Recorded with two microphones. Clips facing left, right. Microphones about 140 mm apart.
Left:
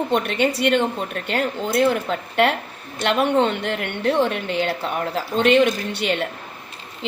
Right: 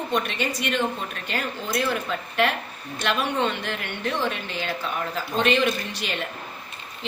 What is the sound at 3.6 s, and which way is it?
Speech, 65° left (ahead or behind).